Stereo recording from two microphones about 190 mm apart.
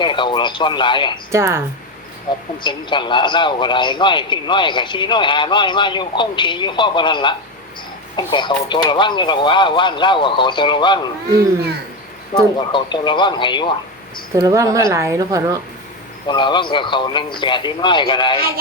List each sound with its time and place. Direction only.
0.0 s a man's voice: 25° left (ahead or behind)
1.3 s a woman's voice: 15° right (ahead or behind)
2.6 s a man's voice: 25° left (ahead or behind)
11.3 s a child's voice: 60° right (ahead or behind)
12.3 s a man's voice: 25° left (ahead or behind)
14.3 s a woman's voice: 15° right (ahead or behind)
16.2 s a man's voice: 25° left (ahead or behind)